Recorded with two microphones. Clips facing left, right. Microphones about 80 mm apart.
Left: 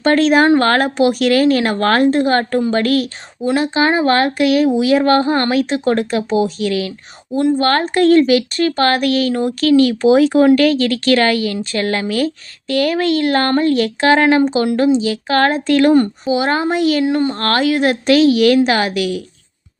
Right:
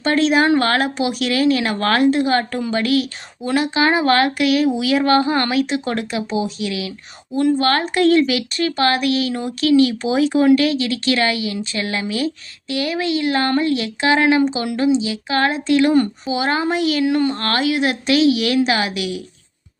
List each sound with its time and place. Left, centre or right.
0.0 s speech: left
3.4 s speech: left
17.4 s speech: left